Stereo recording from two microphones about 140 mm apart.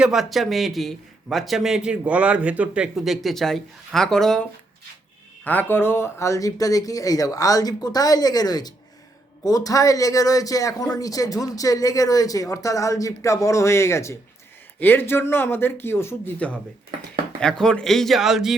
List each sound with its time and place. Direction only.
0.0 s a man's voice: centre (ahead or behind)
5.5 s a man's voice: 15° left (ahead or behind); by 18.5 s 5° right (ahead or behind)